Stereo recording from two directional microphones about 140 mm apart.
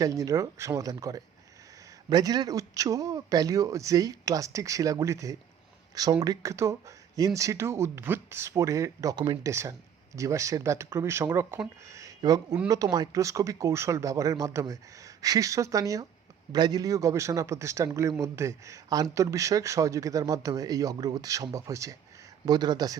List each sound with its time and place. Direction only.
0.0 s speech: 25° right (ahead or behind)
9.5 s speech: 20° right (ahead or behind)